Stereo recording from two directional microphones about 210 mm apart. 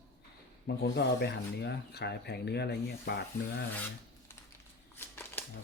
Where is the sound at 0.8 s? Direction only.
50° left (ahead or behind).